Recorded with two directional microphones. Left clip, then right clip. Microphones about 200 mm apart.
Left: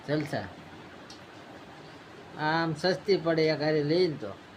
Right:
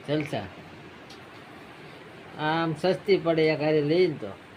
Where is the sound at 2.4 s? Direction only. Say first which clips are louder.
Right 2 dB; 15° right (ahead or behind).